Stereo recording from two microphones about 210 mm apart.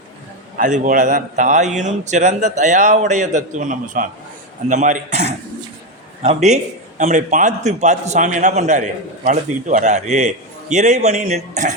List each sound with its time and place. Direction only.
0.5 s a man's voice: 40° right (ahead or behind)